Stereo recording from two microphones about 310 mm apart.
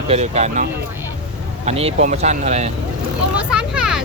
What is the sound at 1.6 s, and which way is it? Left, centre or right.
Speech, centre.